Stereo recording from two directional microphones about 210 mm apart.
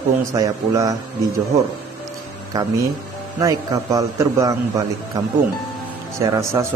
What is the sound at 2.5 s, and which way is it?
A man's voice, 15° right (ahead or behind).